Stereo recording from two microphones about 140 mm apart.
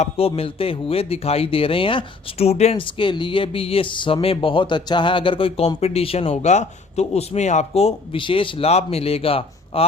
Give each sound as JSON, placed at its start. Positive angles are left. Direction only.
{"t": 0.0, "sound": "speech", "side_deg": 45}
{"t": 2.8, "sound": "speech", "side_deg": 35}